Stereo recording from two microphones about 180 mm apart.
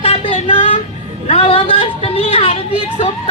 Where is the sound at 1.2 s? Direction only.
30° left (ahead or behind).